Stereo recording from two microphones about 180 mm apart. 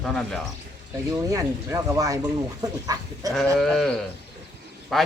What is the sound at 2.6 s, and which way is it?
Livestock, 20° right (ahead or behind).